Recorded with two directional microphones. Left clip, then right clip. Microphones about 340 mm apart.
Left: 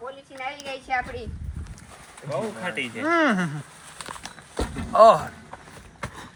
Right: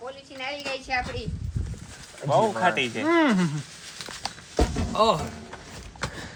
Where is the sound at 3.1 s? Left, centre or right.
Centre.